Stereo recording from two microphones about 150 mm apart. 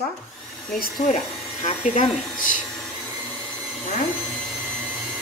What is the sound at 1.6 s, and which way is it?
Speech, 50° left (ahead or behind).